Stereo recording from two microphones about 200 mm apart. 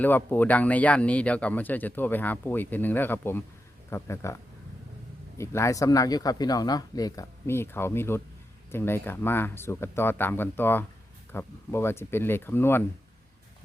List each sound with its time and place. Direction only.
0.0 s speech: 10° left (ahead or behind)
5.4 s speech: 15° left (ahead or behind)